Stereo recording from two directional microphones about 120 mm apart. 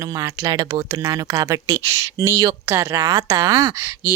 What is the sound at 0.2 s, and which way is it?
Speech, 35° right (ahead or behind).